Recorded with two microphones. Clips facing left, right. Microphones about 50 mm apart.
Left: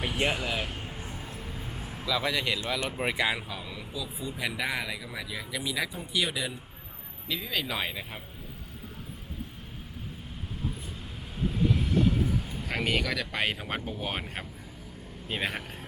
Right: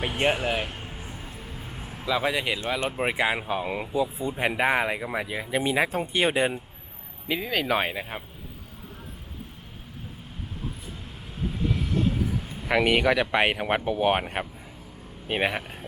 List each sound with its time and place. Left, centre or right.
0.0 s speech: right
0.8 s a sound: centre
2.0 s speech: right
7.3 s speech: right
12.0 s vehicle: centre
12.6 s speech: right